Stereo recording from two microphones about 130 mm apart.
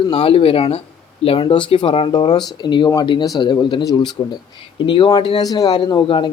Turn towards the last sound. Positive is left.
turn(degrees=40)  # may be behind; listen again after turning